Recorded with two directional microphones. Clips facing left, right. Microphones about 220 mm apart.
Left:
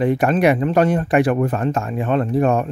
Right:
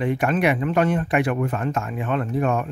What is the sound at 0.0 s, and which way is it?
Speech, 35° left (ahead or behind).